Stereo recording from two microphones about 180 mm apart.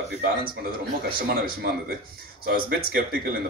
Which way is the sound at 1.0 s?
55° right (ahead or behind).